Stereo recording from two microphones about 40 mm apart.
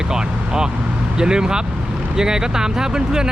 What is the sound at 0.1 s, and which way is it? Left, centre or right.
Vehicle, centre.